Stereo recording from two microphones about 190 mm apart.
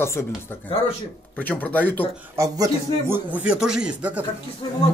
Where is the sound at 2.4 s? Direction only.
15° right (ahead or behind).